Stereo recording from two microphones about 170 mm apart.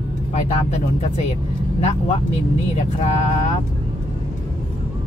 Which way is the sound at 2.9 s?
40° left (ahead or behind).